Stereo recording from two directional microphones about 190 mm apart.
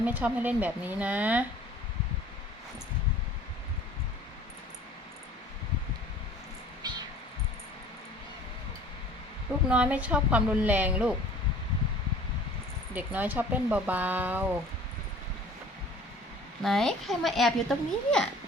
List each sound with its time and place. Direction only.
0.0 s speech: 10° right (ahead or behind)
6.8 s cat: 20° right (ahead or behind)
9.6 s speech: 5° right (ahead or behind)
12.9 s speech: 10° right (ahead or behind)
16.6 s a child's voice: centre (ahead or behind)